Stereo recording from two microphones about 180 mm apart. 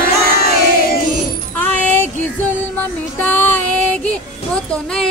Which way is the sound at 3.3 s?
10° left (ahead or behind).